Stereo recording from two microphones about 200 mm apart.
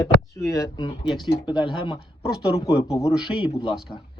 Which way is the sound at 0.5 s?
20° left (ahead or behind).